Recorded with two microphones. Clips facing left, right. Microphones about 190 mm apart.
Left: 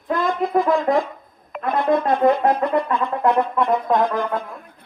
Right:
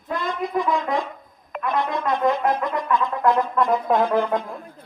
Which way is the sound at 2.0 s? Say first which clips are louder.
Left 1 dB; 30° left (ahead or behind).